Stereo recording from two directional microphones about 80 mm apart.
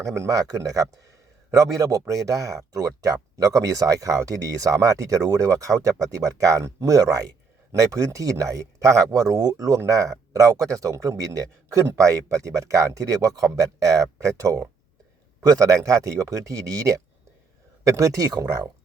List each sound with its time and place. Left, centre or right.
0.0 s speech: right